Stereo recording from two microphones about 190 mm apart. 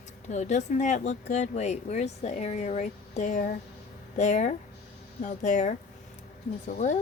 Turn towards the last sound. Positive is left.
turn(degrees=40)  # may be behind; listen again after turning